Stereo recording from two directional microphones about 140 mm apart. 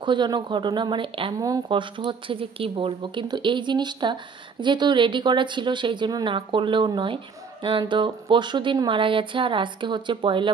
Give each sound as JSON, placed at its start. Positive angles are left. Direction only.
{"t": 0.0, "sound": "speech", "side_deg": -35}